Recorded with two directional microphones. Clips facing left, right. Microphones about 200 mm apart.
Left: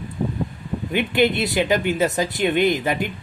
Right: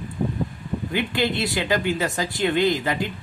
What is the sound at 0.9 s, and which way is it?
Speech, 20° left (ahead or behind).